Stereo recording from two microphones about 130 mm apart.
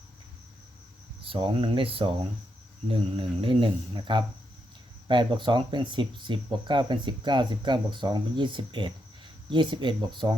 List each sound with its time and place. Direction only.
1.2 s speech: 40° right (ahead or behind)